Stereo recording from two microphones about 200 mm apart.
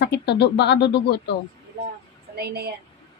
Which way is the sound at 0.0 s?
55° left (ahead or behind).